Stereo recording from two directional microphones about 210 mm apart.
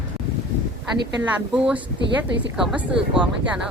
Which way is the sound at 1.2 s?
5° right (ahead or behind).